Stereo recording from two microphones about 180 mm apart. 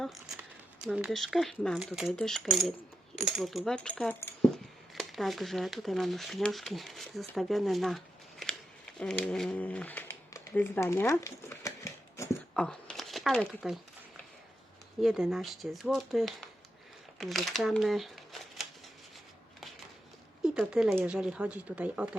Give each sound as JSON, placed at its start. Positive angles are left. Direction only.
{"t": 0.0, "sound": "speech", "side_deg": 0}
{"t": 4.9, "sound": "speech", "side_deg": 0}
{"t": 12.5, "sound": "a sound", "side_deg": 5}
{"t": 15.0, "sound": "speech", "side_deg": 0}
{"t": 20.4, "sound": "speech", "side_deg": -5}